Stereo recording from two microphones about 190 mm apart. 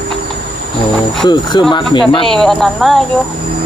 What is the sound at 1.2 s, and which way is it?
Speech, 25° left (ahead or behind).